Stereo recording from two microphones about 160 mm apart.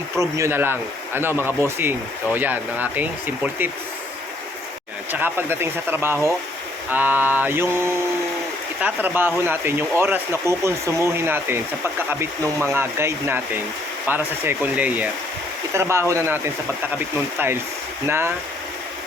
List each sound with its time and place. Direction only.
0.2 s speech: 20° right (ahead or behind)
5.1 s speech: 15° right (ahead or behind)